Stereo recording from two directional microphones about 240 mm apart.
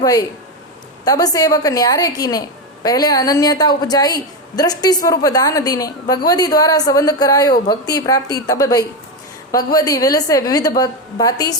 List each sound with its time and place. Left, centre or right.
0.0 s a woman's voice: centre